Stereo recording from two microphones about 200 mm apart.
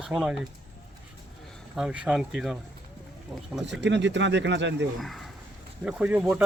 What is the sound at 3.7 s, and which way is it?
Speech, 60° right (ahead or behind).